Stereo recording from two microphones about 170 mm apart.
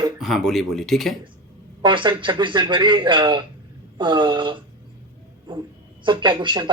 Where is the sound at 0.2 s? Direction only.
Centre (ahead or behind).